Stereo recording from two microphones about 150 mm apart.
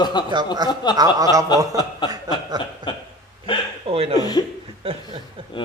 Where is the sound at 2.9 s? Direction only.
30° left (ahead or behind).